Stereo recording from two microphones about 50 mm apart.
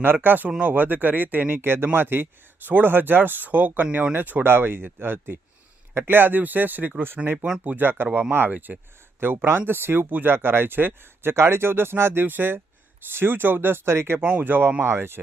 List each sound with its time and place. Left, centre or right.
0.0 s speech: right
7.2 s speech: right
7.6 s speech: right
8.5 s speech: right
9.2 s speech: right
12.2 s speech: right
14.2 s speech: right
14.8 s speech: right